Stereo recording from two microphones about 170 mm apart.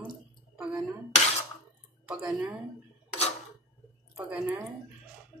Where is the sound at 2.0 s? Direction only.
5° right (ahead or behind).